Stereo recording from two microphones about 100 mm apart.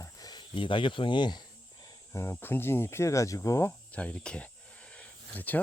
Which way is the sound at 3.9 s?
10° left (ahead or behind).